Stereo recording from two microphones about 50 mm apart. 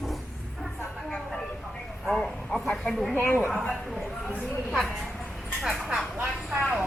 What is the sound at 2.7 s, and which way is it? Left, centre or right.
Speech, centre.